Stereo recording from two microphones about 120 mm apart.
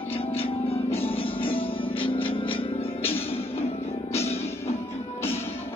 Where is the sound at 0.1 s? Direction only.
50° left (ahead or behind).